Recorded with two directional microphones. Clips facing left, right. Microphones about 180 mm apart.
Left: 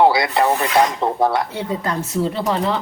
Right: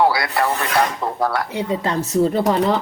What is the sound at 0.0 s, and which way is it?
Speech, 20° left (ahead or behind).